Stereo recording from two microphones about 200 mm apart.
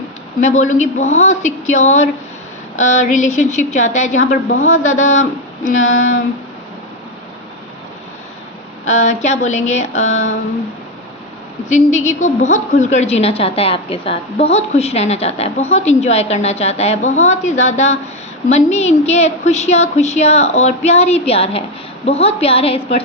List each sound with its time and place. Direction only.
0.4 s a woman's voice: 35° left (ahead or behind)
5.8 s a sound: 75° left (ahead or behind)
8.8 s a woman's voice: 35° left (ahead or behind)
11.7 s a woman's voice: 35° left (ahead or behind)